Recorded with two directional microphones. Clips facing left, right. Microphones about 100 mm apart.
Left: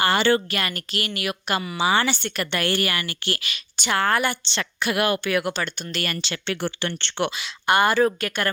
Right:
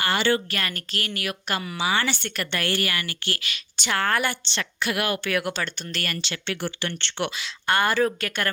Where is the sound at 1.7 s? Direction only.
30° left (ahead or behind).